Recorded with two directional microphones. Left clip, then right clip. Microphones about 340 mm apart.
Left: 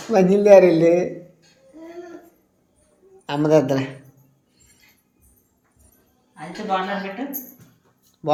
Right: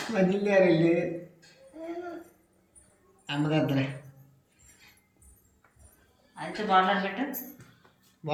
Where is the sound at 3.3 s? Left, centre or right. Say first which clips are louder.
Left 11 dB; centre.